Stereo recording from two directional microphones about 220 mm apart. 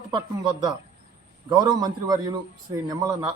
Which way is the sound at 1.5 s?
20° right (ahead or behind).